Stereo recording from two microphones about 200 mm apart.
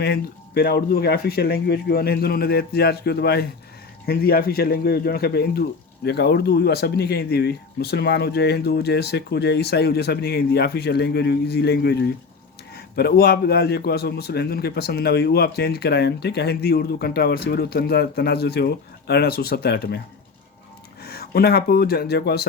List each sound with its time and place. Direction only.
0.0 s a man's voice: 55° left (ahead or behind)
21.0 s speech: 50° left (ahead or behind)